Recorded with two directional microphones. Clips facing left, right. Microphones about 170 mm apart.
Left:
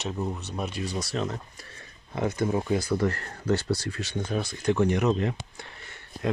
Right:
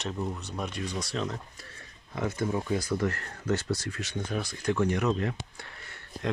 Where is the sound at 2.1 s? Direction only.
35° left (ahead or behind).